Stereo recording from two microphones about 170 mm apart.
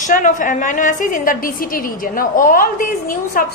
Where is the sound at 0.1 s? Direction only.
50° left (ahead or behind).